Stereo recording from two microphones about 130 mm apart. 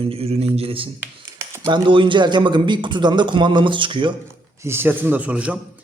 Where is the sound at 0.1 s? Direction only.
50° right (ahead or behind).